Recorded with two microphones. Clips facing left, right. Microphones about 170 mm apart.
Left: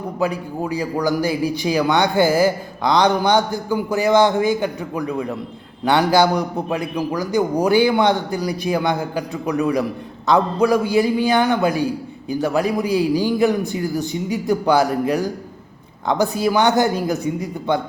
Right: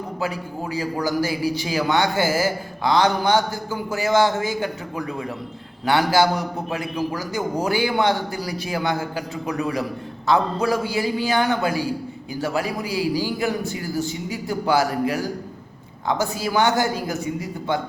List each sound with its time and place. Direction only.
1.0 s a man's voice: 15° left (ahead or behind)
10.2 s a man's voice: 15° left (ahead or behind)